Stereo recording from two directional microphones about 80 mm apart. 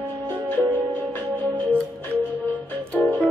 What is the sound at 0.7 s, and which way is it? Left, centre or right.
Music, left.